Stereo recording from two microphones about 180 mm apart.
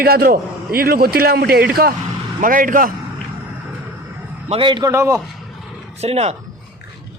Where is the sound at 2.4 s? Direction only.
50° right (ahead or behind).